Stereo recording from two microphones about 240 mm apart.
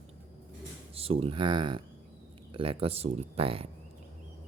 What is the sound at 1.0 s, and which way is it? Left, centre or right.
Speech, right.